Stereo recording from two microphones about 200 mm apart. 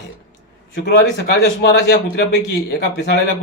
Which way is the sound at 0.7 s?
60° left (ahead or behind).